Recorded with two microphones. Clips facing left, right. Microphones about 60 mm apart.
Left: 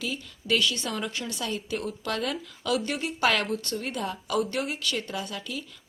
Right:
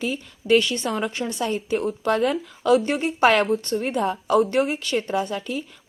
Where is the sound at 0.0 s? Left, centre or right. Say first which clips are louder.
Right 6 dB; right.